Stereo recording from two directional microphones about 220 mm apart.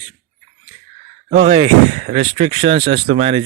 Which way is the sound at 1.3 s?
25° right (ahead or behind).